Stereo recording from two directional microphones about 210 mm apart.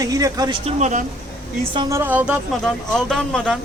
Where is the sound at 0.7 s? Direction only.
35° right (ahead or behind).